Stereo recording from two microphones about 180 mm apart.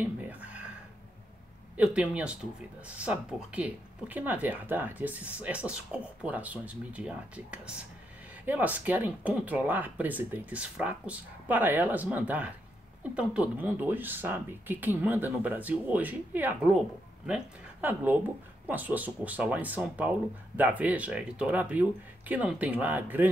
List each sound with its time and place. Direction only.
0.0 s whispering: 10° right (ahead or behind)
1.8 s speech: 5° right (ahead or behind)